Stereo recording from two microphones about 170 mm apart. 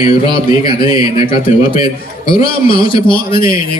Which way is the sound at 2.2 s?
30° left (ahead or behind).